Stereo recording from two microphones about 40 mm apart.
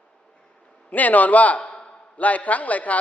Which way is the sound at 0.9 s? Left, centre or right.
Left.